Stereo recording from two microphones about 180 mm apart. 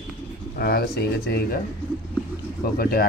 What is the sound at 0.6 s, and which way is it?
Speech, 60° left (ahead or behind).